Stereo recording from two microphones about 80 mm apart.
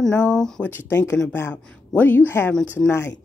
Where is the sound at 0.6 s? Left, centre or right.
Left.